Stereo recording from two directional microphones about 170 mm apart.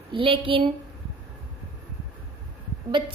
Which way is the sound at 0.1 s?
30° right (ahead or behind).